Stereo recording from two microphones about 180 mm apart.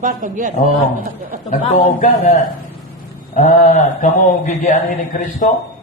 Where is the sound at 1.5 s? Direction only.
45° left (ahead or behind).